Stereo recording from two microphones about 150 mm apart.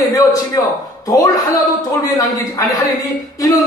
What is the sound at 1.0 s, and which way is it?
A man's voice, 20° left (ahead or behind).